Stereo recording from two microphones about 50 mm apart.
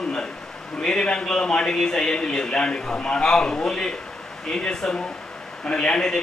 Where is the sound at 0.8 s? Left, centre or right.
Centre.